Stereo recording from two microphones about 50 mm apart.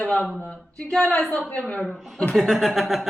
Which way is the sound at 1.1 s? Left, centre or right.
Centre.